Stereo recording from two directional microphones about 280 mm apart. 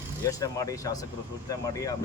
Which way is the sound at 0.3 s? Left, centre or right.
Centre.